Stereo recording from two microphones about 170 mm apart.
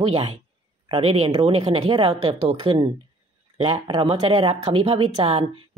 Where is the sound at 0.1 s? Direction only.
35° right (ahead or behind).